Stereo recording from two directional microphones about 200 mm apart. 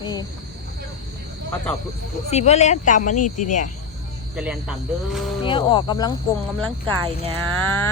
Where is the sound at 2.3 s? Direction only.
35° left (ahead or behind).